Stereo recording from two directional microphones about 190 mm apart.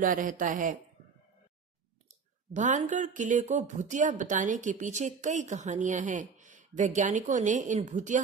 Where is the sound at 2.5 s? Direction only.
40° right (ahead or behind).